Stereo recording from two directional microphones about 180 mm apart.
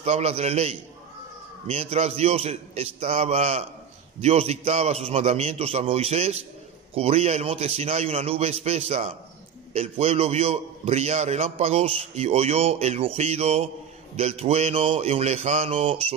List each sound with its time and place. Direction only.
0.0 s a man's voice: 35° right (ahead or behind)